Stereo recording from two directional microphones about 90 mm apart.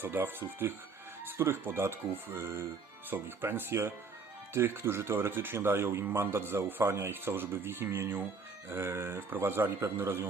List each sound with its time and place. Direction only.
0.0 s speech: 25° right (ahead or behind)